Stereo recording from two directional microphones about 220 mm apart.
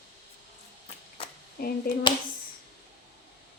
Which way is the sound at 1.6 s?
45° left (ahead or behind).